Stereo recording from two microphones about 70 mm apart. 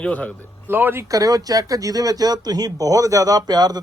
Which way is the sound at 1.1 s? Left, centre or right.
Right.